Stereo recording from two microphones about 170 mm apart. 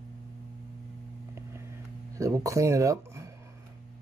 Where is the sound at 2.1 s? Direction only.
20° right (ahead or behind).